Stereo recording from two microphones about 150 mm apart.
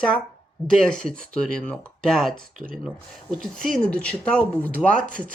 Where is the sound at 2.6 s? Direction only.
70° right (ahead or behind).